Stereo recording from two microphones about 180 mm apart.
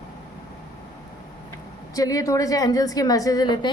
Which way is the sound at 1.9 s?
20° left (ahead or behind).